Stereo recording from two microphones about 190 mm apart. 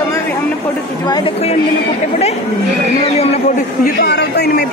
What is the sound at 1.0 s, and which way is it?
Speech, 25° left (ahead or behind).